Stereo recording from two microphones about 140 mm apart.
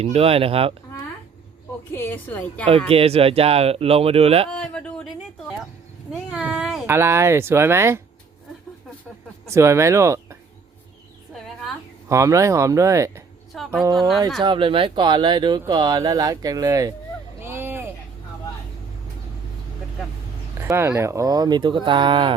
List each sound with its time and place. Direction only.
0.0 s speech: 45° right (ahead or behind)
1.9 s a woman's voice: 15° left (ahead or behind)
2.9 s speech: 45° right (ahead or behind)
4.5 s a sound: 10° left (ahead or behind)
6.1 s cat: 5° right (ahead or behind)
6.8 s speech: 20° right (ahead or behind)
9.5 s speech: 20° right (ahead or behind)
12.0 s speech: 20° right (ahead or behind)
13.5 s a sound: centre (ahead or behind)
14.4 s speech: 35° right (ahead or behind)
17.4 s vehicle: 15° right (ahead or behind)
20.6 s speech: 20° right (ahead or behind); by 22.3 s 35° right (ahead or behind)